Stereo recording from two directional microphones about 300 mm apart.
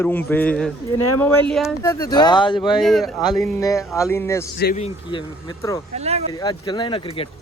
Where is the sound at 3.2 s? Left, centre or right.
Centre.